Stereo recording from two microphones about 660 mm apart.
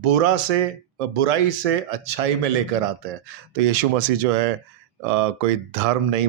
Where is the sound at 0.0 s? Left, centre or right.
Right.